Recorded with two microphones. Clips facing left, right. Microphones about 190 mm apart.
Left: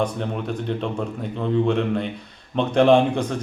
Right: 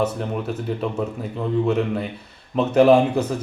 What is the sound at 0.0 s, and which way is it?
Speech, 5° right (ahead or behind).